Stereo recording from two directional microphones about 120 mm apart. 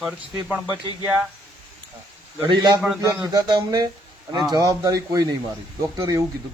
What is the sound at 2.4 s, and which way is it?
Speech, 40° right (ahead or behind).